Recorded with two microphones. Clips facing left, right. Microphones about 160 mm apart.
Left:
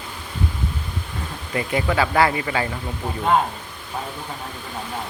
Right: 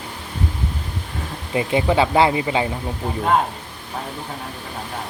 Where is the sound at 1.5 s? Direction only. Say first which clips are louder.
Right 4 dB; 20° right (ahead or behind).